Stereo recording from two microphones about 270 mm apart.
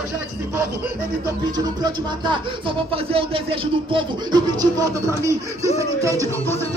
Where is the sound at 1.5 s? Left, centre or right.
Centre.